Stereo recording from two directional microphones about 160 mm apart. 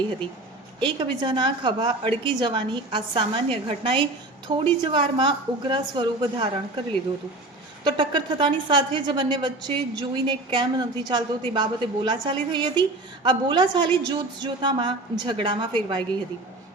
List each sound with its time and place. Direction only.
0.8 s a woman's voice: 30° right (ahead or behind)
7.9 s a woman's voice: 30° right (ahead or behind)